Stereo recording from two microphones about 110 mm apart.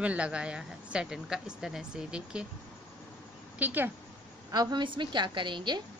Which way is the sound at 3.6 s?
15° right (ahead or behind).